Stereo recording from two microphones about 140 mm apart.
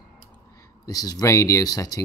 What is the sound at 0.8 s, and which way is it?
Speech, 25° left (ahead or behind).